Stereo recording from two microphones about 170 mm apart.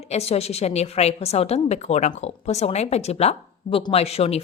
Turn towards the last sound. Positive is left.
turn(degrees=35)  # may be behind; listen again after turning